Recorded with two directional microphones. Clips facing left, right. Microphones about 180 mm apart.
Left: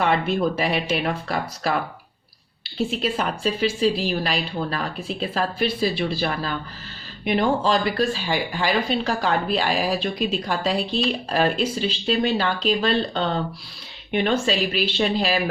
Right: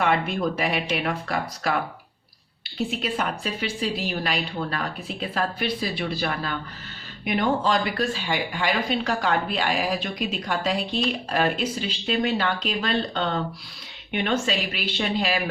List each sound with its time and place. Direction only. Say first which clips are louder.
0.0 s a woman's voice: left 2 dB; 30° left (ahead or behind)
2.7 s a woman's voice: left 3 dB; 30° left (ahead or behind)